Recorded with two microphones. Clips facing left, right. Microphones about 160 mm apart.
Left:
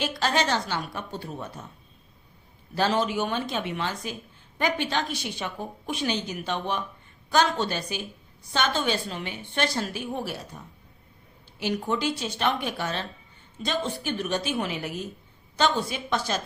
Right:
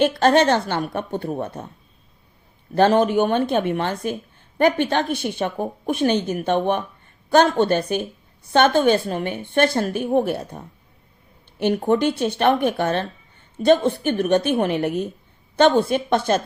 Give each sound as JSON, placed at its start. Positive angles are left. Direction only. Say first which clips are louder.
{"t": 0.0, "sound": "a woman's voice", "louder": "right 10 dB", "side_deg": -55}
{"t": 2.7, "sound": "a woman's voice", "louder": "right 9 dB", "side_deg": -55}